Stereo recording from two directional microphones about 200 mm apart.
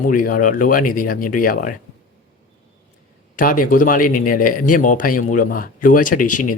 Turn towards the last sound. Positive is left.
turn(degrees=40)  # may be behind; listen again after turning